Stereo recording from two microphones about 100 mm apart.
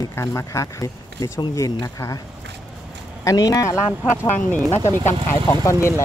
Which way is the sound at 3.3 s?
35° left (ahead or behind).